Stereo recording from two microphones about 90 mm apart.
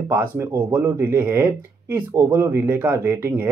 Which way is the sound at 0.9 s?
25° right (ahead or behind).